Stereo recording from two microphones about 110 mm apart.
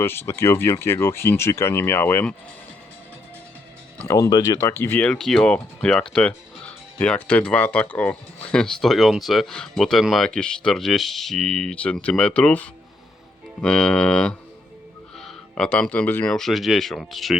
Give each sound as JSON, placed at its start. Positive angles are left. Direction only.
{"t": 0.0, "sound": "speech", "side_deg": 20}
{"t": 4.0, "sound": "speech", "side_deg": 30}
{"t": 4.6, "sound": "speech", "side_deg": 20}
{"t": 5.2, "sound": "speech", "side_deg": 5}
{"t": 16.3, "sound": "speech", "side_deg": 0}